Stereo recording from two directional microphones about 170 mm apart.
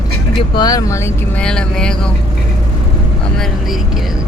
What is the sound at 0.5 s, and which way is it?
Speech, 20° left (ahead or behind).